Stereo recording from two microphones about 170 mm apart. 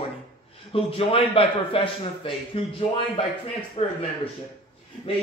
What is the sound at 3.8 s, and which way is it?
Speech, 35° left (ahead or behind).